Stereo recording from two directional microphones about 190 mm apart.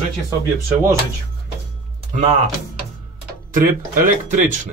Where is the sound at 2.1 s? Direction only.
35° right (ahead or behind).